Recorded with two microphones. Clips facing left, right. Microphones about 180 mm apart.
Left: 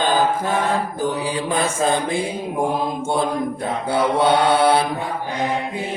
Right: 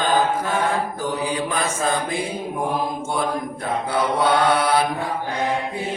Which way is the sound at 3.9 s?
30° left (ahead or behind).